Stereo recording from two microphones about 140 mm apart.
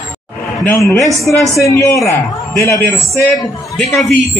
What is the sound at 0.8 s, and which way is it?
A man's voice, 20° left (ahead or behind).